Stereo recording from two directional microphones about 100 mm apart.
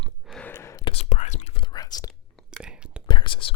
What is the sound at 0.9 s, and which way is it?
Whispering, 90° left.